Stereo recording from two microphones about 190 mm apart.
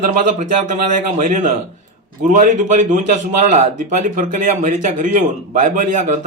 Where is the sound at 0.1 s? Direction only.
40° right (ahead or behind).